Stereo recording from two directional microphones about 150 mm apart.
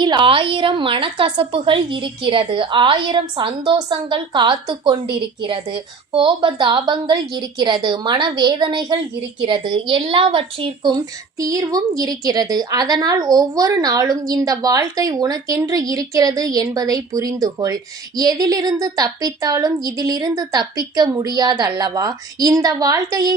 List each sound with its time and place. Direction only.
0.0 s a woman's voice: 30° right (ahead or behind)